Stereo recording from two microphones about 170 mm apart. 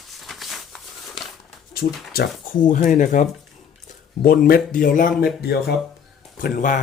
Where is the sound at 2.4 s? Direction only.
55° left (ahead or behind).